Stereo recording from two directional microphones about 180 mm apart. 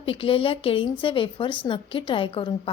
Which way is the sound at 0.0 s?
30° left (ahead or behind).